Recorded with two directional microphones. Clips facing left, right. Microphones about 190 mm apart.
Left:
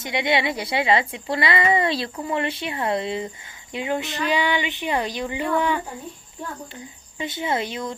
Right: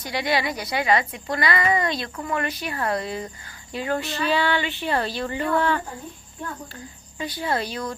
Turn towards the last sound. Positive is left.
turn(degrees=20)  # may be behind; listen again after turning